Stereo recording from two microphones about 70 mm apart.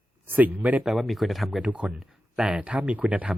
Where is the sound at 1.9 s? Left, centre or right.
Centre.